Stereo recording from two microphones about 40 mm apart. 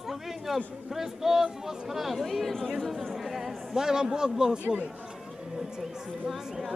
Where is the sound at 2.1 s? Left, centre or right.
Centre.